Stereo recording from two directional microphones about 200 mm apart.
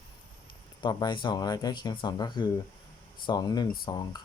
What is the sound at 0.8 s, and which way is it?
Speech, 20° left (ahead or behind).